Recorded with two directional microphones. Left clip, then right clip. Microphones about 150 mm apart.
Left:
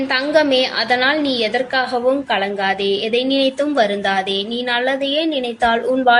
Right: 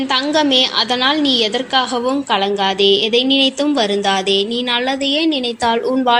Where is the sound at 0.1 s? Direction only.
35° right (ahead or behind).